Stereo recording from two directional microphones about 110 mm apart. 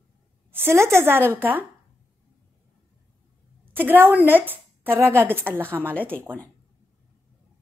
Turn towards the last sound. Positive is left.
turn(degrees=-20)  # may be behind; listen again after turning